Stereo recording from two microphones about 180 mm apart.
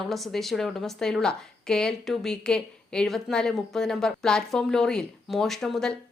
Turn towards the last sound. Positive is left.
turn(degrees=5)  # may be behind; listen again after turning